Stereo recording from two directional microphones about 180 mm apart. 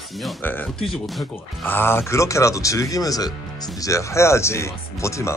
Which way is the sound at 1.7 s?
10° left (ahead or behind).